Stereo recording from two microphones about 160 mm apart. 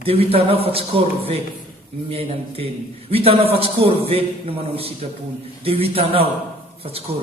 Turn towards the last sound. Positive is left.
turn(degrees=-35)  # may be behind; listen again after turning